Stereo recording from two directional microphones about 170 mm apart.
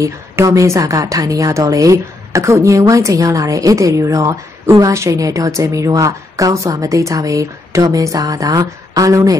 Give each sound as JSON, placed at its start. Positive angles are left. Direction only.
{"t": 0.0, "sound": "speech", "side_deg": -20}